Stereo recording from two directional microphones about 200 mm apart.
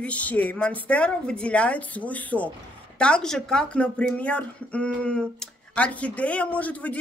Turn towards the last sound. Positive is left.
turn(degrees=5)  # may be behind; listen again after turning